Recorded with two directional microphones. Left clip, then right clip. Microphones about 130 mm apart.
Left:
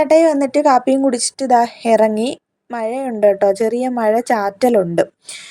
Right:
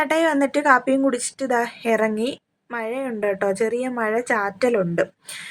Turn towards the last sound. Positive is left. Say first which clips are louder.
# left 6 dB
turn(degrees=35)  # may be behind; listen again after turning